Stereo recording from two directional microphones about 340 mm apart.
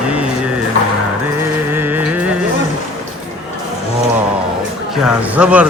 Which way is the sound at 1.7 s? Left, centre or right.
Centre.